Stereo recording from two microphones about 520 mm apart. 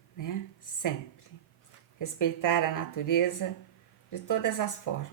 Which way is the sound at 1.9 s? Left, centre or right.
Left.